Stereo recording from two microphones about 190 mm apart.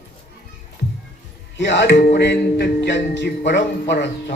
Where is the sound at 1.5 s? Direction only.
65° left (ahead or behind).